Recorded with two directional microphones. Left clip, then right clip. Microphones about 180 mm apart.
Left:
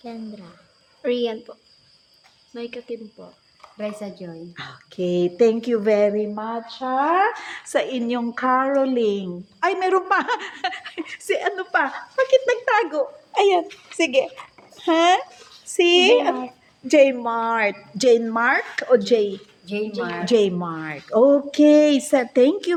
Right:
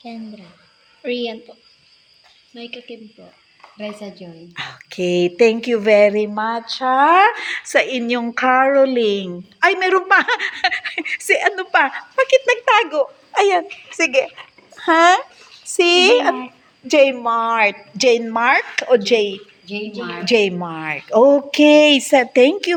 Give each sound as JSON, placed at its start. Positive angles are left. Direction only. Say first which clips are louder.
{"t": 0.0, "sound": "a woman's voice", "louder": "right 1 dB", "side_deg": 15}
{"t": 2.6, "sound": "speech", "louder": "left 2 dB", "side_deg": 20}
{"t": 4.1, "sound": "a woman's voice", "louder": "right 1 dB", "side_deg": -5}
{"t": 14.8, "sound": "a woman's voice", "louder": "right 5 dB", "side_deg": 0}